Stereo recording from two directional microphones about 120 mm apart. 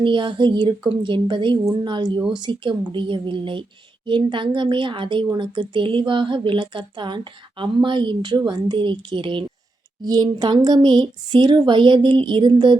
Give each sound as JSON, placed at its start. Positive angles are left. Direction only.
{"t": 0.0, "sound": "a woman's voice", "side_deg": -45}
{"t": 10.0, "sound": "speech", "side_deg": -35}